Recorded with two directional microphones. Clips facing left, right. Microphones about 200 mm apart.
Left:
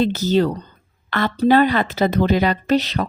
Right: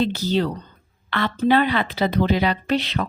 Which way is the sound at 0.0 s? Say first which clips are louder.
Left 4 dB; 50° left (ahead or behind).